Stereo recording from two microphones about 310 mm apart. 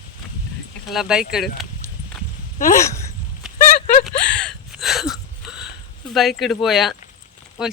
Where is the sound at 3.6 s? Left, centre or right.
Left.